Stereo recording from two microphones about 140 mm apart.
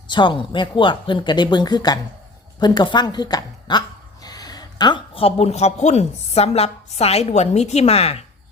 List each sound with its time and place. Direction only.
0.1 s speech: 35° left (ahead or behind)